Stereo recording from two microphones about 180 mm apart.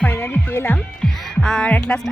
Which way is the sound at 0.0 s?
10° left (ahead or behind).